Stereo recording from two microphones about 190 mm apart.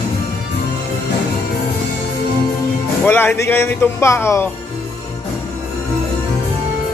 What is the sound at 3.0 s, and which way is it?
Speech, 10° left (ahead or behind).